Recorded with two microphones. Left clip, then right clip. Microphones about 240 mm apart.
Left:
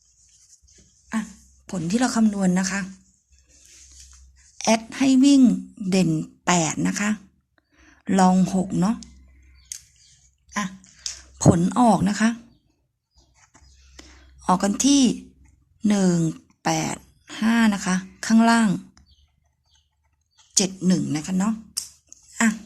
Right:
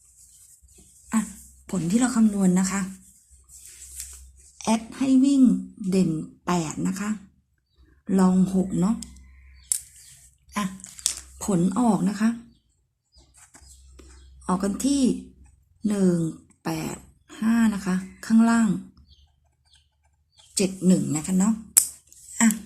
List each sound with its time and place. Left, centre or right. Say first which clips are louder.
1.0 s a sound: right 2 dB; centre
2.0 s speech: left 1 dB; left
4.5 s speech: left 5 dB; left
11.3 s speech: left 7 dB; left
14.4 s speech: left 6 dB; left
20.5 s speech: left 1 dB; left
22.3 s a sound: left 1 dB; centre